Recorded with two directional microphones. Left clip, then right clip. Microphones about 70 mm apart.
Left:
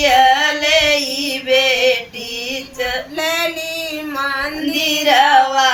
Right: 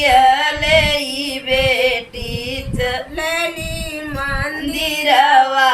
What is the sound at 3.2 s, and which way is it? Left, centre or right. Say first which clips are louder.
Male singing: left 1 dB; left.